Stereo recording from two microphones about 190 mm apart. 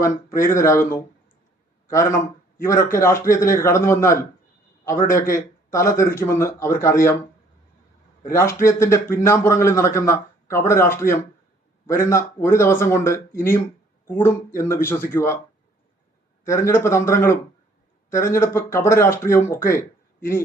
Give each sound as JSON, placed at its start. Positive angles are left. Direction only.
{"t": 0.0, "sound": "a man's voice", "side_deg": 15}
{"t": 8.3, "sound": "a man's voice", "side_deg": 15}
{"t": 16.5, "sound": "a man's voice", "side_deg": 15}